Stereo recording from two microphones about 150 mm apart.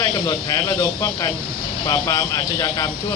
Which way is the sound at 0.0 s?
25° left (ahead or behind).